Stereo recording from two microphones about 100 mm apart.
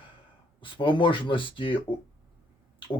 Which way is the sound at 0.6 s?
55° left (ahead or behind).